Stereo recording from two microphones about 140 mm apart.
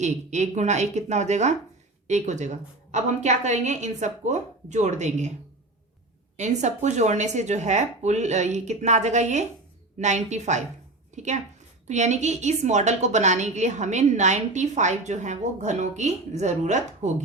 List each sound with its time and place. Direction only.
0.0 s a woman's voice: 55° right (ahead or behind)
6.3 s a woman's voice: 55° right (ahead or behind)